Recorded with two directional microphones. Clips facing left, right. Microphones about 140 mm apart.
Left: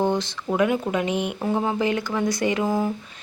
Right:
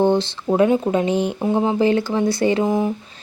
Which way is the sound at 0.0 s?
30° right (ahead or behind).